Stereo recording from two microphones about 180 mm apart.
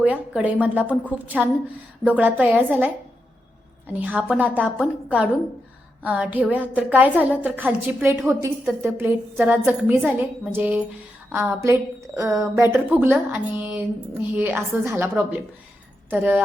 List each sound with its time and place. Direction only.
0.0 s a woman's voice: 10° right (ahead or behind)
3.9 s a woman's voice: 10° right (ahead or behind)